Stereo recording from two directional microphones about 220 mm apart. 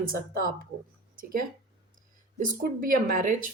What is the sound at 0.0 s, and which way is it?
Speech, 40° right (ahead or behind).